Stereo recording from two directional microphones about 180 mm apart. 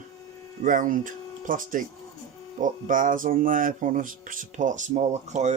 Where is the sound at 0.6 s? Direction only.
45° right (ahead or behind).